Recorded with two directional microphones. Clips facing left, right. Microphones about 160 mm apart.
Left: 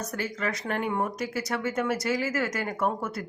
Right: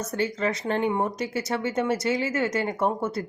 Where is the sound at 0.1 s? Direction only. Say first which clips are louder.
Right 5 dB; 25° right (ahead or behind).